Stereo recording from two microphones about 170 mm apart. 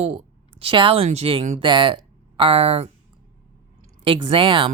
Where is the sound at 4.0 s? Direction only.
30° right (ahead or behind).